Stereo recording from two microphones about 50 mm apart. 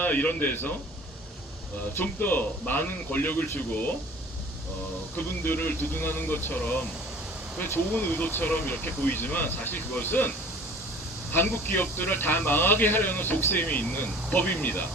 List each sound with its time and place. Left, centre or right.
0.0 s speech: left
2.0 s speech: left
5.4 s speech: left